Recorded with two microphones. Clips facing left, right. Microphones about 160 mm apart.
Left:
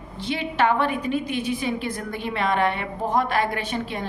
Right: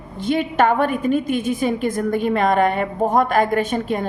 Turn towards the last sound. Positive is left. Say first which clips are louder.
# right 8 dB
turn(degrees=-45)  # may be behind; listen again after turning